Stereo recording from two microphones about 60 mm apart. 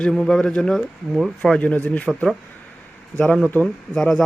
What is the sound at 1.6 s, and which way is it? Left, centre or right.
Speech, left.